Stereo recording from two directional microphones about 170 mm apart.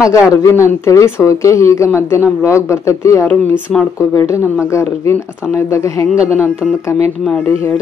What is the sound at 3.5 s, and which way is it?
Speech, centre (ahead or behind).